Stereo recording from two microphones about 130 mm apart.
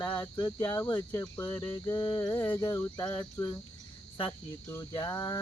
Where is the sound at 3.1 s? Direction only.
35° left (ahead or behind).